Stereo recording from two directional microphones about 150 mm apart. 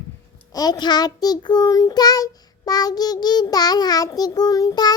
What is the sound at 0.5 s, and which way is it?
Child singing, 25° left (ahead or behind).